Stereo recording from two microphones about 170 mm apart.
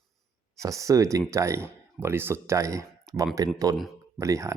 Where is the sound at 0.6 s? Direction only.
20° right (ahead or behind).